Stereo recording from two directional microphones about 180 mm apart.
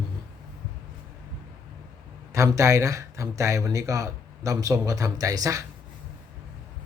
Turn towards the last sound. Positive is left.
turn(degrees=-20)  # may be behind; listen again after turning